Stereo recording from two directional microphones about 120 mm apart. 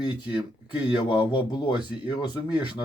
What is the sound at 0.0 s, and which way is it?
Speech, 40° left (ahead or behind).